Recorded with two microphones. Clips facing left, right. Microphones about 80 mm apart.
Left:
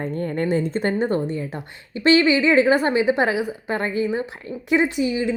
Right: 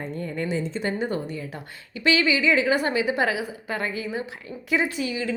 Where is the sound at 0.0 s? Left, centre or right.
Left.